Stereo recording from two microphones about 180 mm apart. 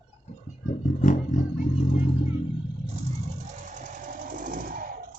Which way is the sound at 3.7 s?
45° right (ahead or behind).